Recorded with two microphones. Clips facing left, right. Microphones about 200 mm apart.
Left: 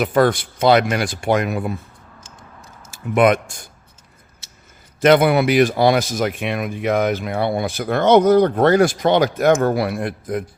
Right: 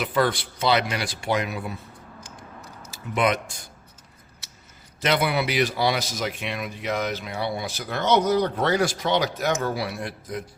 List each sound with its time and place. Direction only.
0.0 s speech: 50° left (ahead or behind)
2.9 s speech: 50° left (ahead or behind)
4.9 s speech: 50° left (ahead or behind)